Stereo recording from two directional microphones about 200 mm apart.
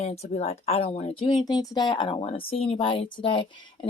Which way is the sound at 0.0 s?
30° left (ahead or behind).